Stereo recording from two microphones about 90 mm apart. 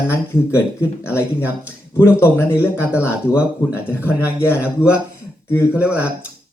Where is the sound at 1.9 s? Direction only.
30° left (ahead or behind).